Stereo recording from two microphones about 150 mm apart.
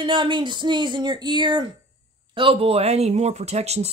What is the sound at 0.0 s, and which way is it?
Speech, 30° right (ahead or behind).